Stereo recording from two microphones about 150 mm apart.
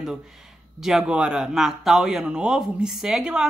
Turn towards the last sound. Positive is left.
turn(degrees=-5)  # may be behind; listen again after turning